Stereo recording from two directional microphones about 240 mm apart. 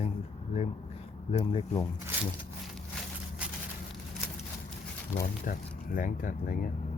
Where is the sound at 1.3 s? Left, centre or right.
Left.